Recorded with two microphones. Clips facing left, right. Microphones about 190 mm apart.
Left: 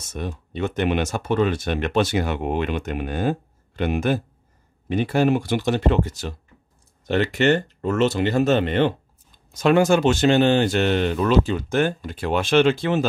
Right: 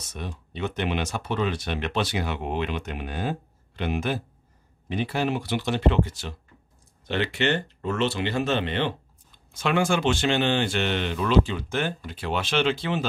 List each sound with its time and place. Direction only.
0.0 s speech: 45° left (ahead or behind)